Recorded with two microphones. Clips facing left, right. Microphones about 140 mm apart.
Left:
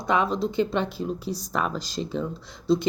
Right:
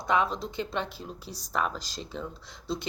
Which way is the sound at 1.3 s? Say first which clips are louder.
Right 1 dB; 90° left.